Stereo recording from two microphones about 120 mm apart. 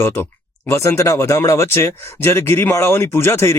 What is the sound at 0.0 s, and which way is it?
Speech, 20° left (ahead or behind).